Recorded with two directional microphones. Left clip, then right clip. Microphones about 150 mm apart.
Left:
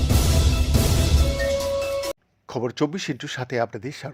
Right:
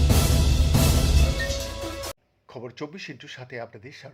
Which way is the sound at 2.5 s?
50° left (ahead or behind).